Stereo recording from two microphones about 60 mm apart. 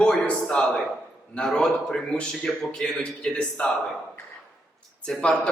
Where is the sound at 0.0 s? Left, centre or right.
Centre.